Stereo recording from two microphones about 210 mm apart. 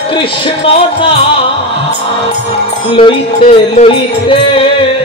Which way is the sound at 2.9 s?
25° left (ahead or behind).